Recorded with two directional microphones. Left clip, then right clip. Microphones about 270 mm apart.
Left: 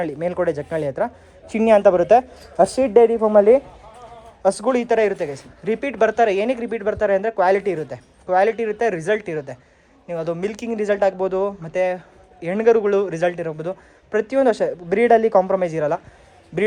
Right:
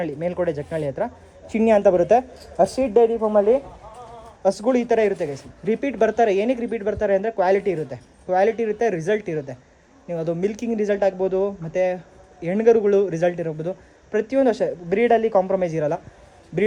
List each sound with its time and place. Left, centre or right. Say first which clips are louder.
0.0 s speech: left 2 dB; centre
2.6 s a woman's voice: left 3 dB; left
4.4 s speech: left 1 dB; centre